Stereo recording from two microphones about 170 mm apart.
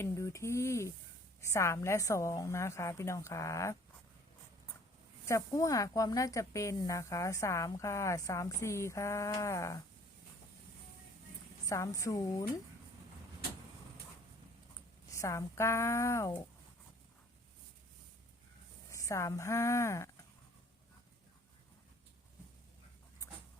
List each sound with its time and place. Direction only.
0.0 s speech: 15° left (ahead or behind)
5.2 s speech: 20° left (ahead or behind)
11.6 s a woman's voice: 20° left (ahead or behind)
15.1 s speech: 20° left (ahead or behind)
18.9 s speech: 20° left (ahead or behind)